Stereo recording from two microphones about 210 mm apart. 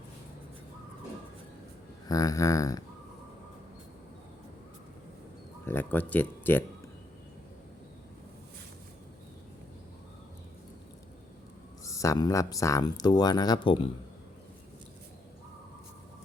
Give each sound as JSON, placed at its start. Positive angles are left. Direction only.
{"t": 2.0, "sound": "speech", "side_deg": 15}
{"t": 5.6, "sound": "speech", "side_deg": 10}
{"t": 11.9, "sound": "speech", "side_deg": 15}